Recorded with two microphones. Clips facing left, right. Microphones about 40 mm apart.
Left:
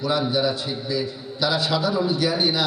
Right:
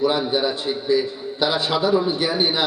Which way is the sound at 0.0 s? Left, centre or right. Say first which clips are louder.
Right 2 dB; right.